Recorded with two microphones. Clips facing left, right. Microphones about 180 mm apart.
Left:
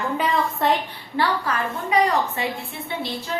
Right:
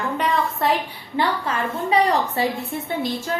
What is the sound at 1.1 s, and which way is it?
A woman's voice, 25° right (ahead or behind).